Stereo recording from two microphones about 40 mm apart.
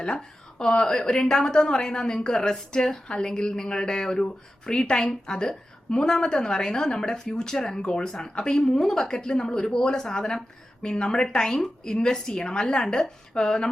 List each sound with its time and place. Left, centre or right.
0.0 s a woman's voice: centre